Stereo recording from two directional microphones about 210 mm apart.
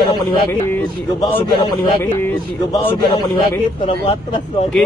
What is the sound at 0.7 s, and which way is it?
Speech, 10° left (ahead or behind).